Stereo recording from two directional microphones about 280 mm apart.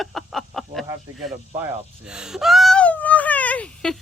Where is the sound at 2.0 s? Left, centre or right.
Centre.